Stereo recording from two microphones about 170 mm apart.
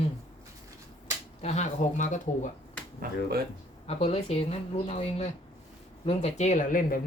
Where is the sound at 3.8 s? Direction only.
40° left (ahead or behind).